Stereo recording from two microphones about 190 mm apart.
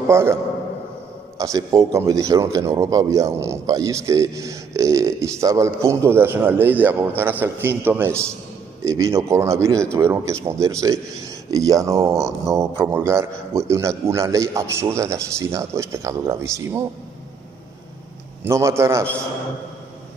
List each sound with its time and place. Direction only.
0.1 s speech: 15° right (ahead or behind)
1.4 s speech: 15° right (ahead or behind)
18.4 s speech: 15° right (ahead or behind)